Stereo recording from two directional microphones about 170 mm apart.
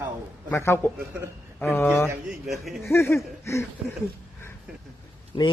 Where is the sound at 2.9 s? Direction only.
15° left (ahead or behind).